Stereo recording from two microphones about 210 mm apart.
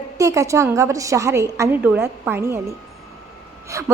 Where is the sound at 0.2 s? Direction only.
15° right (ahead or behind).